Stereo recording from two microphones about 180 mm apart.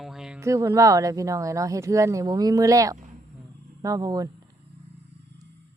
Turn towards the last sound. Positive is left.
turn(degrees=-20)  # may be behind; listen again after turning